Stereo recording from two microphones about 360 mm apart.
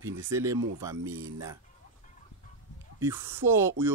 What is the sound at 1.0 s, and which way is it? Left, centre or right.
Speech, right.